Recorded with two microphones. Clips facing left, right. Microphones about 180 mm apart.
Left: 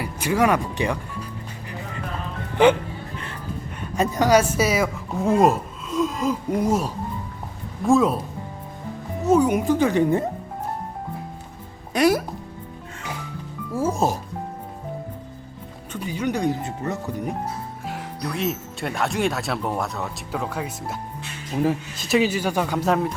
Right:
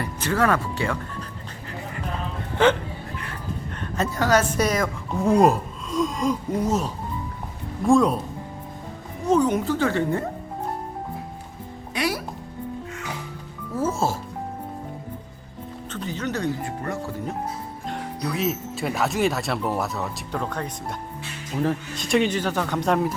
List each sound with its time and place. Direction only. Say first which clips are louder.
0.0 s speech: left 2 dB; 10° left (ahead or behind)
2.6 s speech: left 3 dB; 15° left (ahead or behind)
3.8 s a woman's voice: left 4 dB; 15° left (ahead or behind)
9.2 s speech: left 2 dB; 10° left (ahead or behind)
11.9 s speech: left 8 dB; 45° left (ahead or behind)
13.7 s speech: left 2 dB; 15° left (ahead or behind)
15.9 s speech: left 3 dB; 10° left (ahead or behind)
17.8 s speech: right 2 dB; centre (ahead or behind)